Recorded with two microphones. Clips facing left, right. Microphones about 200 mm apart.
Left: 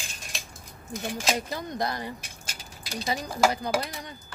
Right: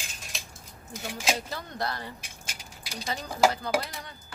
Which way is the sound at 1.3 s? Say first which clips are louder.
Left 4 dB; 15° left (ahead or behind).